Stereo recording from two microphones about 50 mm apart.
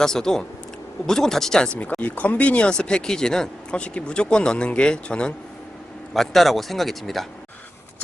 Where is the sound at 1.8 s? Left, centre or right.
Left.